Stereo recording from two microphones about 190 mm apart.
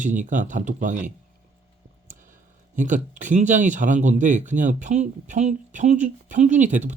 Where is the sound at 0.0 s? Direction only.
40° right (ahead or behind).